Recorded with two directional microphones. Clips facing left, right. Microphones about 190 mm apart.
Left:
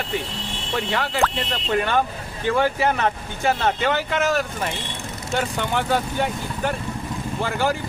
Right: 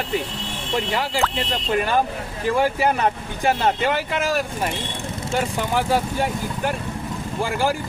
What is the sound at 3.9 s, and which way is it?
Speech, 5° right (ahead or behind).